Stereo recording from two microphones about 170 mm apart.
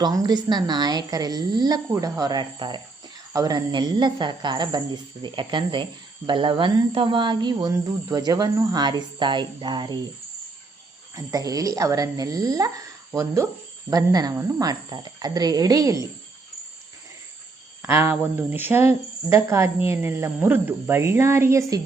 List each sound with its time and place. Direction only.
0.0 s speech: 25° right (ahead or behind)
11.1 s speech: 20° right (ahead or behind)
17.8 s a woman's voice: 15° right (ahead or behind)